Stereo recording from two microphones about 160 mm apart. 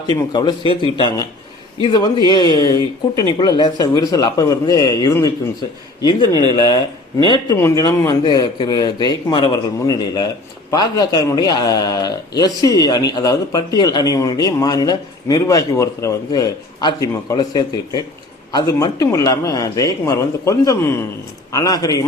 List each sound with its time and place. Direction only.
0.1 s speech: 25° left (ahead or behind)